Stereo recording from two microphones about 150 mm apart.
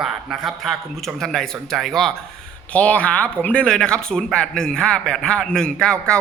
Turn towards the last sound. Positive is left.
turn(degrees=5)  # may be behind; listen again after turning